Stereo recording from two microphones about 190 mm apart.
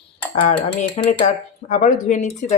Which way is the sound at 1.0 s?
35° left (ahead or behind).